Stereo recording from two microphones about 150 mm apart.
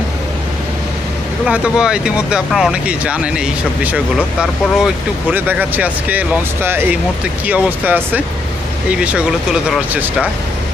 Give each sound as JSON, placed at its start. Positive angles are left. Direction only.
{"t": 1.5, "sound": "speech", "side_deg": -10}